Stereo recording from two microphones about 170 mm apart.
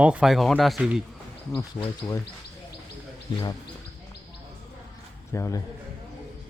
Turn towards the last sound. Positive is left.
turn(degrees=15)  # may be behind; listen again after turning